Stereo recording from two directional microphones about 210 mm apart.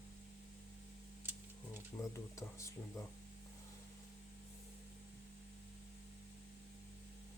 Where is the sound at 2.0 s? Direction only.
15° left (ahead or behind).